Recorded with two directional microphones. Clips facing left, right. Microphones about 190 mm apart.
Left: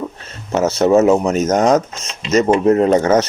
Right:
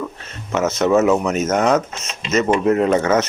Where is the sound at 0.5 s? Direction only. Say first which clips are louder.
Left 3 dB; 35° left (ahead or behind).